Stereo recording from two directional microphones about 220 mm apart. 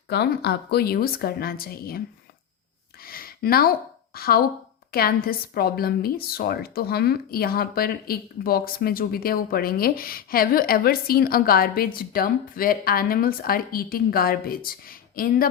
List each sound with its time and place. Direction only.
0.1 s a woman's voice: 50° left (ahead or behind)
3.0 s a sound: 40° left (ahead or behind)
4.9 s a woman's voice: 45° left (ahead or behind)